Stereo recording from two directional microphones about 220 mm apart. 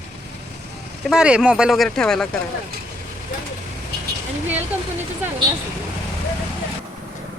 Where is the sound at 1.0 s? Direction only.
5° right (ahead or behind).